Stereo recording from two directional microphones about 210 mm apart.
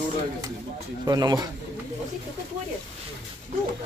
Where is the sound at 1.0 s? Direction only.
20° right (ahead or behind).